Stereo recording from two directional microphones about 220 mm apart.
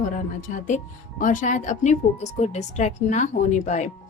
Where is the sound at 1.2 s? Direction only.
35° left (ahead or behind).